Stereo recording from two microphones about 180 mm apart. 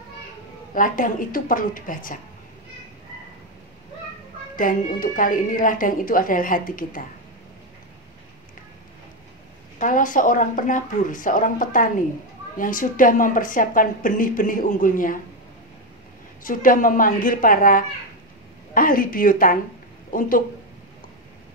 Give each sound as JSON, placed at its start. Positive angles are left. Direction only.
{"t": 0.7, "sound": "a woman's voice", "side_deg": 50}
{"t": 4.6, "sound": "a woman's voice", "side_deg": 50}
{"t": 9.8, "sound": "a woman's voice", "side_deg": 45}
{"t": 16.4, "sound": "a woman's voice", "side_deg": 50}